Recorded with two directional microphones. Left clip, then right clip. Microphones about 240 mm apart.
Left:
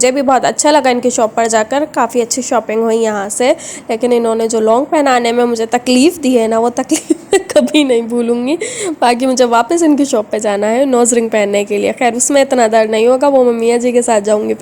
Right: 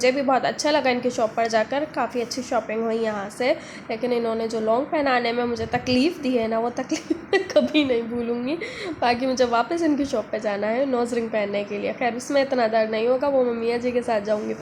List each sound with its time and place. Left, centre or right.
0.0 s a woman's voice: left